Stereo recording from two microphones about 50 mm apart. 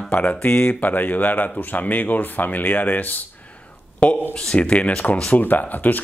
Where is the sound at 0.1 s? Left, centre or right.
Left.